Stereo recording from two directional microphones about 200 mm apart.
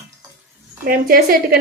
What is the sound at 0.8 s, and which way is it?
Speech, 45° right (ahead or behind).